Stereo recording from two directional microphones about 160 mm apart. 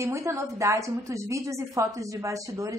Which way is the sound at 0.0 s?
15° right (ahead or behind).